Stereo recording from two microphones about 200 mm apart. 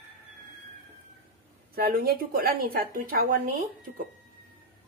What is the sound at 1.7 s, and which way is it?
Speech, 50° right (ahead or behind).